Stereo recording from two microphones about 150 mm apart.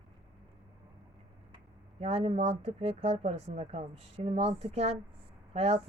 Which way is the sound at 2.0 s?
40° right (ahead or behind).